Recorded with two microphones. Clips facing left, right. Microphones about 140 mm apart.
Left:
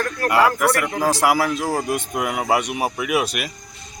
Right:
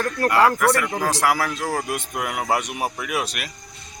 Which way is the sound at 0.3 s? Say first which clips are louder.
Even; 10° left (ahead or behind).